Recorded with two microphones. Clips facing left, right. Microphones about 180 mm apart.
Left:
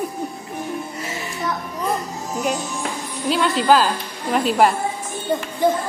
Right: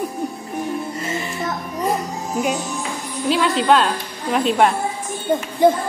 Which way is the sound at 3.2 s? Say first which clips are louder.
Right 1 dB; centre (ahead or behind).